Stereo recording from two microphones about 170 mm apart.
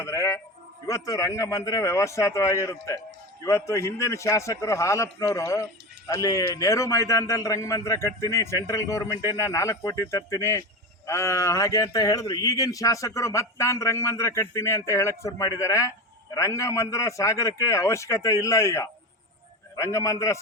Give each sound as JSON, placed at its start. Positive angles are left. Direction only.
{"t": 0.0, "sound": "a man's voice", "side_deg": 15}